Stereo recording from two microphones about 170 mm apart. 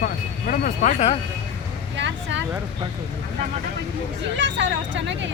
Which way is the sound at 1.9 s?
90° right.